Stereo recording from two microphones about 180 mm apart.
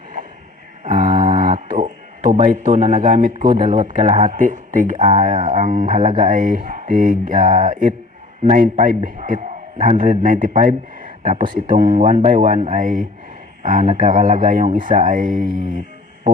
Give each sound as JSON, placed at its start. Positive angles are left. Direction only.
{"t": 0.9, "sound": "music", "side_deg": -25}
{"t": 1.4, "sound": "a sound", "side_deg": -50}
{"t": 1.7, "sound": "speech", "side_deg": -40}
{"t": 4.9, "sound": "speech", "side_deg": -35}